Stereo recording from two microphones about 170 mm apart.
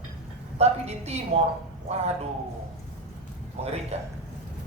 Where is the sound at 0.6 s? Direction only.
40° right (ahead or behind).